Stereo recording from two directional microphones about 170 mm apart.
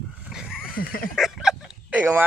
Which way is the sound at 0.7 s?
60° left (ahead or behind).